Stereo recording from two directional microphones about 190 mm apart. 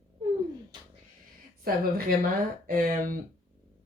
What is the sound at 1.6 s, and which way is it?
Speech, 50° right (ahead or behind).